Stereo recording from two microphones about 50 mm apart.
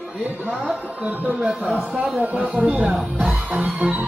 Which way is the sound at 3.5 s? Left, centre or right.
Right.